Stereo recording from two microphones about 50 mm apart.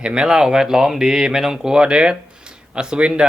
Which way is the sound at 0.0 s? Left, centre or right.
Centre.